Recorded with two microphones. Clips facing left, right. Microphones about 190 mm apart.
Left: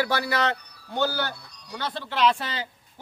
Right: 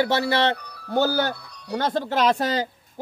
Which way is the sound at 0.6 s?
65° right (ahead or behind).